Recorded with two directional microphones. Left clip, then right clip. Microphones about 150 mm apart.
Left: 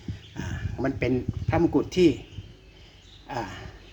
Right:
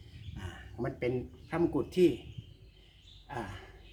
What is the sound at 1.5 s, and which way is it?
Speech, 40° left (ahead or behind).